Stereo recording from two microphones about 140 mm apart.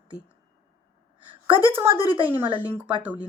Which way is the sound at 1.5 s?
15° right (ahead or behind).